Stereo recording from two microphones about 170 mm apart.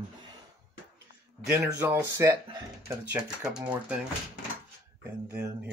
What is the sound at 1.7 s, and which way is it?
Speech, 15° right (ahead or behind).